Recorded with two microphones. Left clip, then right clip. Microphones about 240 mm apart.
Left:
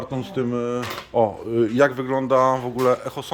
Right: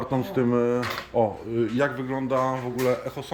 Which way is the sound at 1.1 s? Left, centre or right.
Centre.